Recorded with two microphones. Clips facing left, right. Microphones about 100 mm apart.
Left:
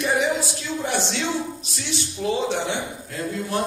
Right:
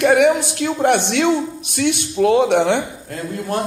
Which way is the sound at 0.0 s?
65° right (ahead or behind).